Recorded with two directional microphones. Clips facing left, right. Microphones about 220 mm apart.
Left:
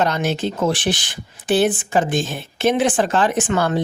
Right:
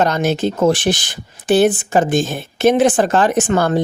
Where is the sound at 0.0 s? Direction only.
45° right (ahead or behind).